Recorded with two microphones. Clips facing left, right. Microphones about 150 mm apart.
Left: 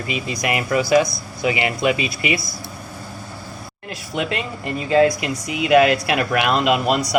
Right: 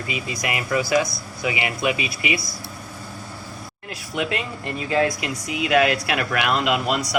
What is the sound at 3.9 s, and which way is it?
Speech, 25° left (ahead or behind).